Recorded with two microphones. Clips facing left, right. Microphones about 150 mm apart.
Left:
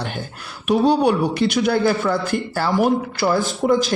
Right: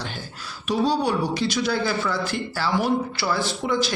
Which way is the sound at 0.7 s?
60° left (ahead or behind).